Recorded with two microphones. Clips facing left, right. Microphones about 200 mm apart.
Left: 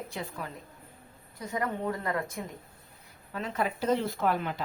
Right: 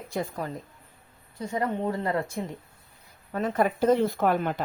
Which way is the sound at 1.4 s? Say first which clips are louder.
Right 4 dB; 25° right (ahead or behind).